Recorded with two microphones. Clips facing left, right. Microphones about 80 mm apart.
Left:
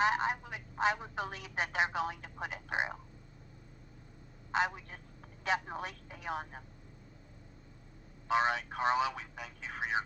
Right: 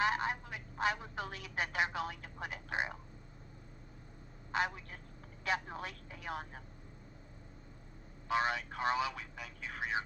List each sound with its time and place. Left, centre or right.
0.0 s speech: left
4.5 s a man's voice: left
5.4 s telephone: left
8.3 s speech: left